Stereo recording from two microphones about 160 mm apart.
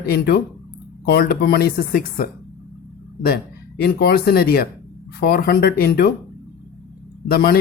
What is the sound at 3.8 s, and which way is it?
Speech, 75° left (ahead or behind).